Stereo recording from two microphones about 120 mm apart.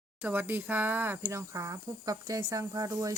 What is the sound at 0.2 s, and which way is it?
Speech, 15° right (ahead or behind).